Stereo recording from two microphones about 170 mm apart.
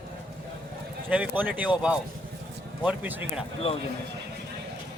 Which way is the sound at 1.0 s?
10° right (ahead or behind).